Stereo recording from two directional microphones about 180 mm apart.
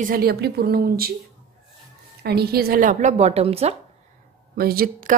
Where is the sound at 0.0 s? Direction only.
55° right (ahead or behind).